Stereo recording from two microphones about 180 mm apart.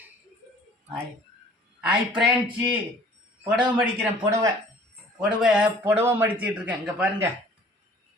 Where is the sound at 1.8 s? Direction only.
5° right (ahead or behind).